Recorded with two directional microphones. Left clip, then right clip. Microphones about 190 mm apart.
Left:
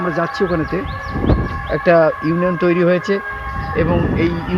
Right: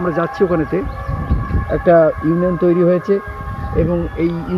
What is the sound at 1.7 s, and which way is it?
Speech, 25° left (ahead or behind).